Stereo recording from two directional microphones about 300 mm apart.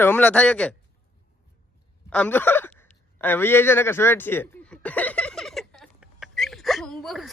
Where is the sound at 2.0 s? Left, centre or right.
Centre.